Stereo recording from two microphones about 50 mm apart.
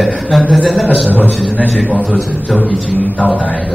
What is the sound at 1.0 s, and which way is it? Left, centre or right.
Speech, left.